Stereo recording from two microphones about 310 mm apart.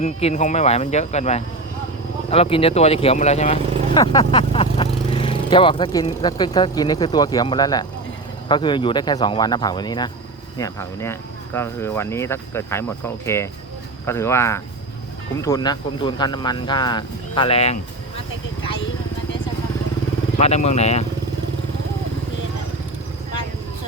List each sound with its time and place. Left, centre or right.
0.0 s speech: left
20.4 s speech: left